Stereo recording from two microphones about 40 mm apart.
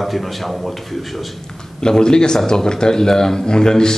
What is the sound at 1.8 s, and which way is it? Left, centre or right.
A man's voice, centre.